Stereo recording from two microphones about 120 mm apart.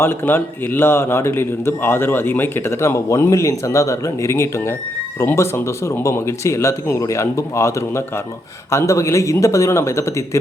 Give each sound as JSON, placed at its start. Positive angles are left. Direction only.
{"t": 0.0, "sound": "a man's voice", "side_deg": 20}